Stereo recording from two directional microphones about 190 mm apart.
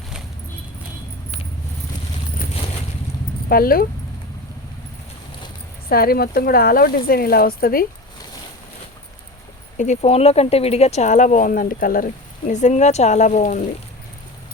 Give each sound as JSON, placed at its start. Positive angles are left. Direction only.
{"t": 3.5, "sound": "speech", "side_deg": 50}
{"t": 5.9, "sound": "speech", "side_deg": 55}
{"t": 9.7, "sound": "speech", "side_deg": 40}